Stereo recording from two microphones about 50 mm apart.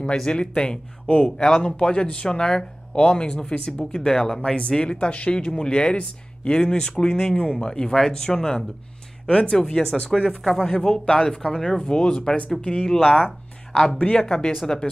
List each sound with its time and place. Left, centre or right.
0.0 s speech: centre
10.4 s a man's voice: centre
13.9 s speech: left
14.2 s speech: centre